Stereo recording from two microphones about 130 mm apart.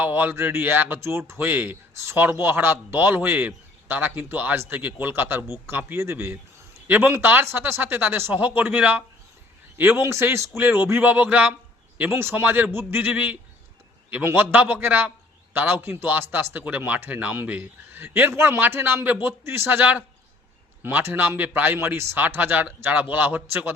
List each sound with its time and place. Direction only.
0.0 s a man's voice: 15° right (ahead or behind)